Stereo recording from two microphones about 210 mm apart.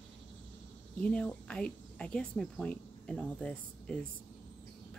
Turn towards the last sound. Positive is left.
turn(degrees=5)  # may be behind; listen again after turning